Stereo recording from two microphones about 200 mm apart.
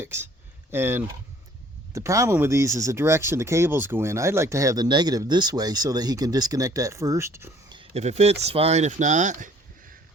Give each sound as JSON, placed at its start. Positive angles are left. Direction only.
{"t": 0.0, "sound": "speech", "side_deg": -10}
{"t": 7.8, "sound": "speech", "side_deg": -30}